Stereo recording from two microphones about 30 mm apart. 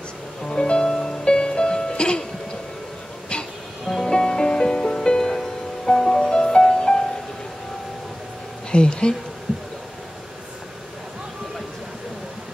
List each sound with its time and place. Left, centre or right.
0.5 s music: left
3.9 s music: left
5.3 s music: centre
6.3 s music: left
8.7 s speech: left